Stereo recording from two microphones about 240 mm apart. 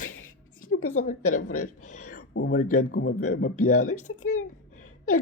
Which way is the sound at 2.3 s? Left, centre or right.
Left.